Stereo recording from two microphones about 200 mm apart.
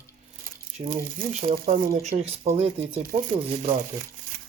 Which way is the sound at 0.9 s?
40° right (ahead or behind).